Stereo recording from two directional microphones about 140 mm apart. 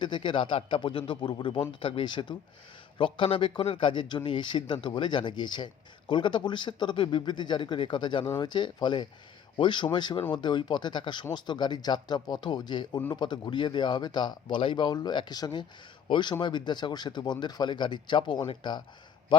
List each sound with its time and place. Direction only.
0.0 s a man's voice: 35° left (ahead or behind)